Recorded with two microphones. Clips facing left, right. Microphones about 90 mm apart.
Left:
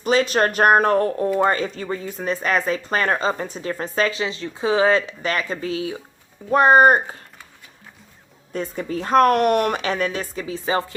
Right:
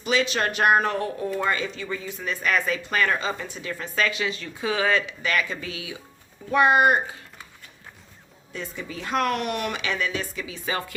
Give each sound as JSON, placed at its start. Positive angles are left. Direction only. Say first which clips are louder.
{"t": 0.0, "sound": "speech", "louder": "left 6 dB", "side_deg": 40}
{"t": 8.5, "sound": "speech", "louder": "left 8 dB", "side_deg": 45}